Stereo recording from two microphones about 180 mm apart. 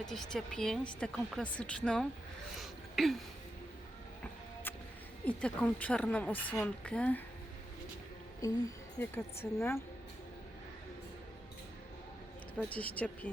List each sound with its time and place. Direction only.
0.0 s a woman's voice: centre (ahead or behind)
2.6 s a sound: centre (ahead or behind)
5.2 s a woman's voice: 5° left (ahead or behind)
8.4 s a woman's voice: 20° left (ahead or behind)
12.6 s a woman's voice: 10° left (ahead or behind)